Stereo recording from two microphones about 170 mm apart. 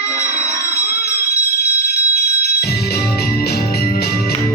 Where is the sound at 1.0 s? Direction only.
65° left (ahead or behind).